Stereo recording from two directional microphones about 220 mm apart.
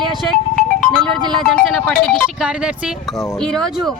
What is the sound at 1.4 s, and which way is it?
A man's voice, centre (ahead or behind).